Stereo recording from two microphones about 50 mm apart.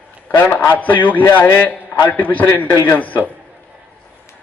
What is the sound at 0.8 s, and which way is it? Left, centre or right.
A man's voice, left.